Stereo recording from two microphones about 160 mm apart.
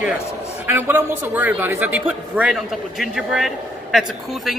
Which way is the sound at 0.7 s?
15° right (ahead or behind).